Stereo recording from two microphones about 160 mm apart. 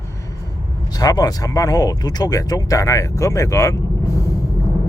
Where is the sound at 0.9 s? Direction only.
25° left (ahead or behind).